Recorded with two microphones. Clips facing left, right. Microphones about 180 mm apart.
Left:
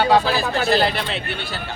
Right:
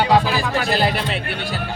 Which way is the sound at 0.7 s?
10° right (ahead or behind).